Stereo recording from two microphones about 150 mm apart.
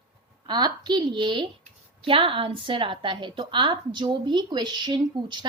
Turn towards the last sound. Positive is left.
turn(degrees=-30)  # may be behind; listen again after turning